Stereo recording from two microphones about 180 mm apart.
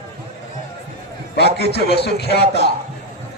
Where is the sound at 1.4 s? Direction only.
65° left (ahead or behind).